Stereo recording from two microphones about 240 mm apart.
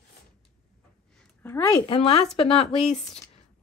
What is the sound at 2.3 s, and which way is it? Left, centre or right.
Speech, left.